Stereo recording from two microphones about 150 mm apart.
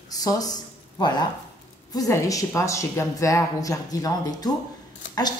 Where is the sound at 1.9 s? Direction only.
25° left (ahead or behind).